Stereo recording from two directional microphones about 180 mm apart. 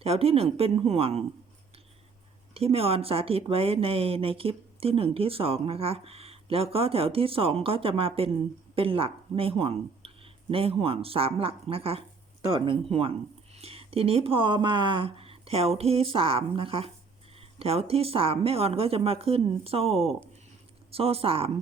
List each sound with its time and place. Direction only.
0.0 s speech: 35° right (ahead or behind)
2.6 s speech: 30° right (ahead or behind)